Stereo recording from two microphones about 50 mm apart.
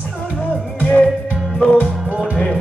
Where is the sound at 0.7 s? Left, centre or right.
Left.